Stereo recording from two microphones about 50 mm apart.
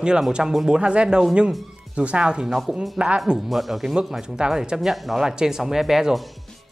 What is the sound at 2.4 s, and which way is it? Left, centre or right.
Speech, centre.